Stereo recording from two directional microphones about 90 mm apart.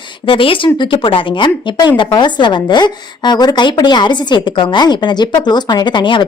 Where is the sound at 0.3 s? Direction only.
75° left (ahead or behind).